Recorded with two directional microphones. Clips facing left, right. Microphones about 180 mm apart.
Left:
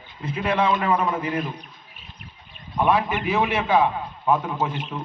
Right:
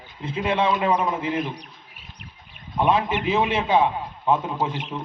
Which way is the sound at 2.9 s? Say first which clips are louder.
Even; 25° right (ahead or behind).